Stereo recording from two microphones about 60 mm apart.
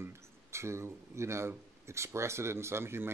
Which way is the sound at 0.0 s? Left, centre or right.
Right.